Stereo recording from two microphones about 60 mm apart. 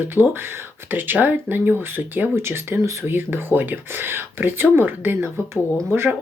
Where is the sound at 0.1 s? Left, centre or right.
Right.